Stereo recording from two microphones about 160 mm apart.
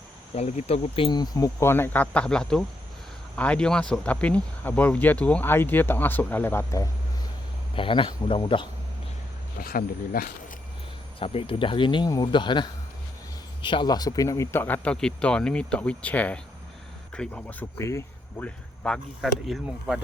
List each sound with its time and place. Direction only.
0.3 s speech: 45° left (ahead or behind); by 6.8 s 15° left (ahead or behind)
7.8 s speech: 35° left (ahead or behind)
9.6 s speech: 65° left (ahead or behind)
11.2 s speech: 35° left (ahead or behind); by 20.0 s centre (ahead or behind)